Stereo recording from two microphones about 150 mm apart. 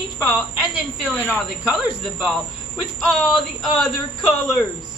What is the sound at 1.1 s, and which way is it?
Speech, 10° left (ahead or behind).